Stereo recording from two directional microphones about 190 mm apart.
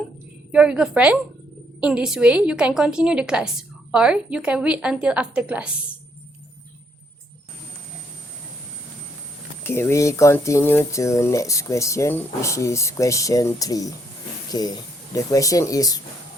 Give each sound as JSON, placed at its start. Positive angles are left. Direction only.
{"t": 0.5, "sound": "a woman's voice", "side_deg": -5}
{"t": 9.6, "sound": "speech", "side_deg": 15}